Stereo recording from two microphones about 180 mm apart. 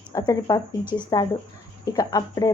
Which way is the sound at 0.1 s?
20° left (ahead or behind).